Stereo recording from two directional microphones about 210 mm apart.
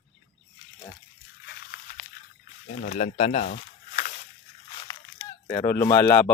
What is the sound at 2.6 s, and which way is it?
Speech, 35° left (ahead or behind).